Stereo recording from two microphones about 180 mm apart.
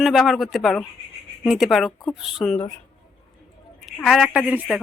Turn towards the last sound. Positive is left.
turn(degrees=-5)  # may be behind; listen again after turning